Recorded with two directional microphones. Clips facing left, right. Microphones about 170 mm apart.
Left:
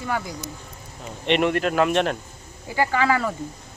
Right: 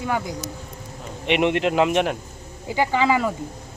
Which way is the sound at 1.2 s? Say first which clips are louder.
Right 1 dB; 15° right (ahead or behind).